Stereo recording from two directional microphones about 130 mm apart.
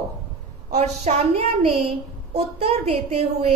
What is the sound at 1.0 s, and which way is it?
A woman's voice, 60° right (ahead or behind).